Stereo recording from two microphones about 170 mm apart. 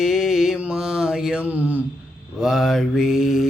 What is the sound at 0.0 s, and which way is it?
Mantra, centre (ahead or behind).